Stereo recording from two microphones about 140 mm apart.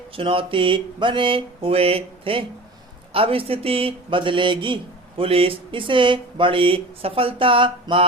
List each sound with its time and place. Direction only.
0.2 s a man's voice: 40° right (ahead or behind)